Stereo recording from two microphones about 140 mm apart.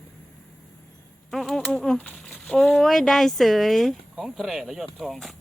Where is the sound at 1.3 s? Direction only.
Centre (ahead or behind).